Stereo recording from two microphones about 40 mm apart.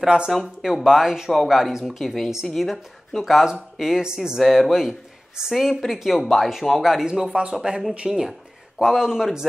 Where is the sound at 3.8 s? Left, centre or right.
Centre.